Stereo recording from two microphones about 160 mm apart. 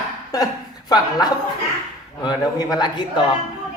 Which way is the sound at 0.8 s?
25° left (ahead or behind).